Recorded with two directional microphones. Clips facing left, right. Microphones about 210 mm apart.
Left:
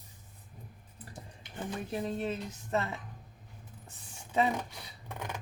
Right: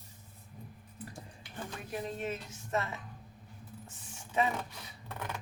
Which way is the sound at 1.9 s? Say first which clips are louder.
Left 2 dB; 35° left (ahead or behind).